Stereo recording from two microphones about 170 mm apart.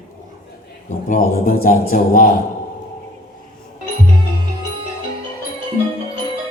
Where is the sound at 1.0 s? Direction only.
55° left (ahead or behind).